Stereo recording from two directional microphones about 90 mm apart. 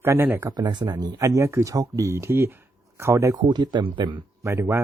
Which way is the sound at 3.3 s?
55° right (ahead or behind).